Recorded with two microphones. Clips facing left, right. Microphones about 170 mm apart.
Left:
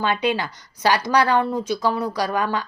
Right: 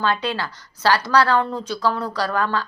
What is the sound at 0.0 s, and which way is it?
A woman's voice, 15° left (ahead or behind).